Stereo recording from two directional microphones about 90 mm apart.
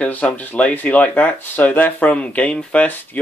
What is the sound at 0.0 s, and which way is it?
Speech, 15° left (ahead or behind).